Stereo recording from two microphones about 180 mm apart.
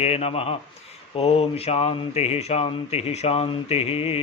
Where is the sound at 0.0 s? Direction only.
35° left (ahead or behind).